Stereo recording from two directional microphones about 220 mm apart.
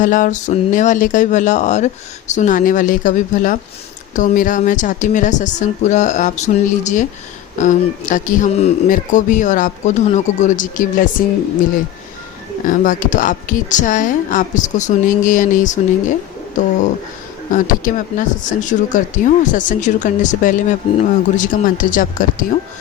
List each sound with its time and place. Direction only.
0.0 s speech: 35° left (ahead or behind)
12.6 s speech: 35° left (ahead or behind)
17.5 s speech: 35° left (ahead or behind)